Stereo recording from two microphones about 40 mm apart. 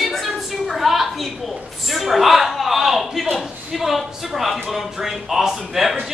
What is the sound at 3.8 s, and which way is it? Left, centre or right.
Music, centre.